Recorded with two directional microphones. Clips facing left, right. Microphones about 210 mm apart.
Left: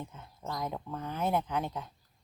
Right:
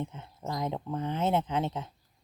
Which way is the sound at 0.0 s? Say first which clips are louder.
Right 5 dB; 20° right (ahead or behind).